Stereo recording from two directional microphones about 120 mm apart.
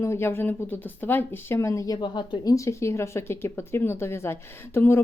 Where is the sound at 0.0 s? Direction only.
20° left (ahead or behind).